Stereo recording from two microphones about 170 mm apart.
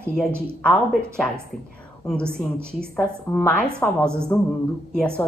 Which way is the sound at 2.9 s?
10° left (ahead or behind).